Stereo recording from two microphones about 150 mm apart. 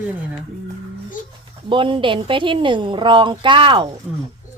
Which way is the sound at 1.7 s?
35° right (ahead or behind).